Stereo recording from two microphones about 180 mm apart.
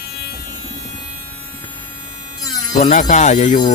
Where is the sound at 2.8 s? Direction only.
45° left (ahead or behind).